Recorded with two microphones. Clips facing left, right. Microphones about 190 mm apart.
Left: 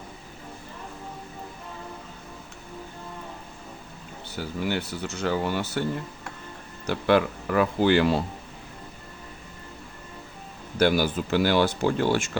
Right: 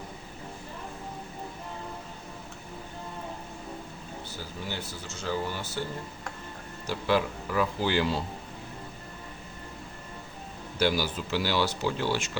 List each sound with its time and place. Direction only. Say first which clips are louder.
4.7 s speech: left 8 dB; 65° left (ahead or behind)
6.8 s speech: left 5 dB; 60° left (ahead or behind)
10.8 s speech: left 5 dB; 55° left (ahead or behind)